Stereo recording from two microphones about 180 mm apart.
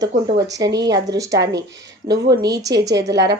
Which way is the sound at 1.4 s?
75° right (ahead or behind).